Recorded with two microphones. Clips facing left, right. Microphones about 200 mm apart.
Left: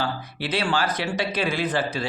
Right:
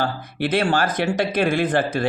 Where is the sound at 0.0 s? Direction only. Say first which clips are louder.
Right 5 dB; 50° right (ahead or behind).